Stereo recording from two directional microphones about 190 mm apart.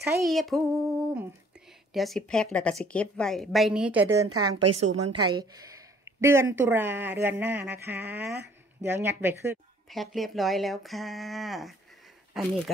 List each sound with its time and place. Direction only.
0.2 s speech: centre (ahead or behind)
4.6 s a woman's voice: 30° right (ahead or behind); by 9.6 s 15° right (ahead or behind)
9.8 s speech: centre (ahead or behind)